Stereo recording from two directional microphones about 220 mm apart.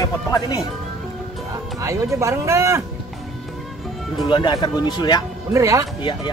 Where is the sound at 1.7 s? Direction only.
15° right (ahead or behind).